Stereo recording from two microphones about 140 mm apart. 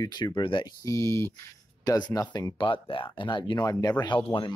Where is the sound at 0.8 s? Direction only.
20° left (ahead or behind).